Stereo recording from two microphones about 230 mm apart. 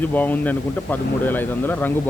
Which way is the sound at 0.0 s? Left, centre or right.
Centre.